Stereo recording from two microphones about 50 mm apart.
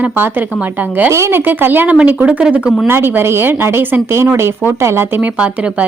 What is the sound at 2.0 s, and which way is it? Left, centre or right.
Speech, right.